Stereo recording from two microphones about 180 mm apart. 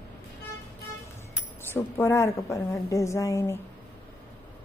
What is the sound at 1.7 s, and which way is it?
A woman's voice, 15° left (ahead or behind).